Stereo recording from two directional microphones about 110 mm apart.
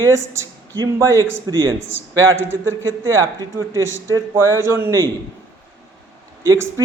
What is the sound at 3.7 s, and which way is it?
A man's voice, 30° right (ahead or behind).